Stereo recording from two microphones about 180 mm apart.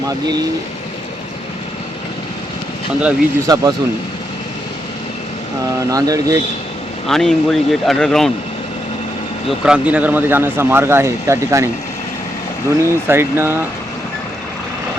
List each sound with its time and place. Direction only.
3.0 s speech: 10° right (ahead or behind)
3.5 s speech: 20° right (ahead or behind)
5.9 s speech: 20° right (ahead or behind)
7.1 s speech: centre (ahead or behind)
9.5 s speech: 5° right (ahead or behind)
13.1 s speech: 15° right (ahead or behind)